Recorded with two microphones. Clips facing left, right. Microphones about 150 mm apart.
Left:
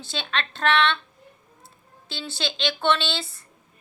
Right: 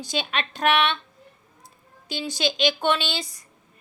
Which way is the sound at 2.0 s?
15° right (ahead or behind).